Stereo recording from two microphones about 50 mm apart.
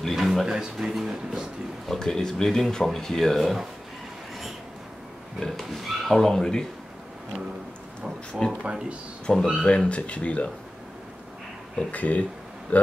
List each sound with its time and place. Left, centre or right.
0.0 s a sound: centre
0.6 s speech: centre
1.9 s speech: centre
5.4 s speech: centre
8.6 s speech: right
9.2 s speech: centre
9.6 s speech: left
11.9 s speech: left